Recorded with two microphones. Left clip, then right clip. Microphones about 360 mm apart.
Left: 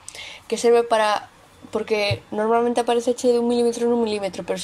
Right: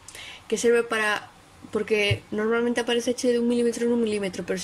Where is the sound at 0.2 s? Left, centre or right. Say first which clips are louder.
Left 3 dB; centre.